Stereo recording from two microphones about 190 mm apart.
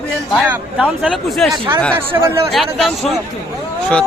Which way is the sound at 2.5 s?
Centre (ahead or behind).